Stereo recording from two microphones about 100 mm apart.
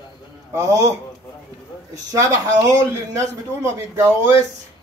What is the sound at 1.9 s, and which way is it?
A man's voice, 35° right (ahead or behind).